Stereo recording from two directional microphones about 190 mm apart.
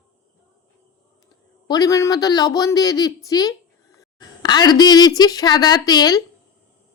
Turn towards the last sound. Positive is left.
turn(degrees=20)  # may be behind; listen again after turning